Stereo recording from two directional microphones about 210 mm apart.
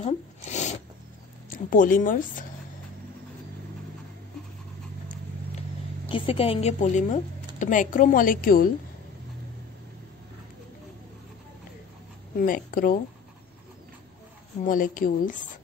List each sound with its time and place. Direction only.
0.0 s zipper: 35° left (ahead or behind)
1.5 s speech: 40° left (ahead or behind)
6.0 s speech: 25° left (ahead or behind); by 8.6 s 45° left (ahead or behind)
12.4 s speech: 40° left (ahead or behind)
14.6 s speech: 40° left (ahead or behind)